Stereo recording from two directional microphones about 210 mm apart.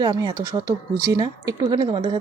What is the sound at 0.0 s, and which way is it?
Speech, 20° right (ahead or behind).